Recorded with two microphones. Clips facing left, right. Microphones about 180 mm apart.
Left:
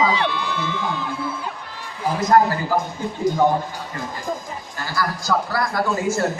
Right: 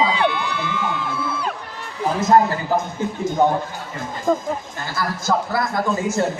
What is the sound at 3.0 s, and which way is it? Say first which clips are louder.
Speech: right 3 dB; 20° right (ahead or behind).